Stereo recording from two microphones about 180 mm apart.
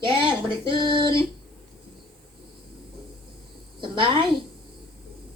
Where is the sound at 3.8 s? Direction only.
30° right (ahead or behind).